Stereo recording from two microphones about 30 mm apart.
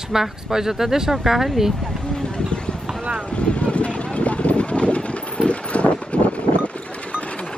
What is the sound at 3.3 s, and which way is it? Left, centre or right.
Vehicle, left.